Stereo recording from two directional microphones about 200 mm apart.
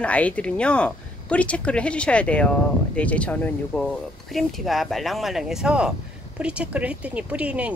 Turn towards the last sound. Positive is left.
turn(degrees=-5)  # may be behind; listen again after turning